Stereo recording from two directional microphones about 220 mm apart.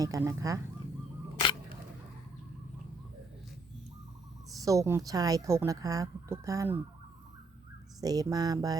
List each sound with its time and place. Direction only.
0.0 s speech: 15° right (ahead or behind)
1.4 s camera: 20° left (ahead or behind)
4.6 s speech: 15° right (ahead or behind)
8.0 s speech: 15° right (ahead or behind)